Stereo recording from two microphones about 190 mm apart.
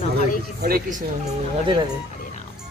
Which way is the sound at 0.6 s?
45° right (ahead or behind).